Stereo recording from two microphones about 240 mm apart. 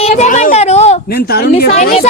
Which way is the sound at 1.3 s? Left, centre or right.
Left.